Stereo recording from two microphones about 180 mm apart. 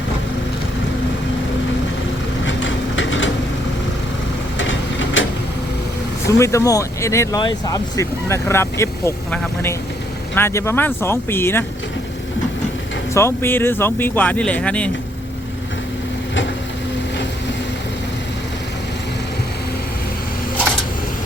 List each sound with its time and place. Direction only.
2.5 s a sound: 90° left
4.5 s vehicle: 90° left
6.2 s speech: 15° left (ahead or behind)
13.1 s speech: 15° left (ahead or behind)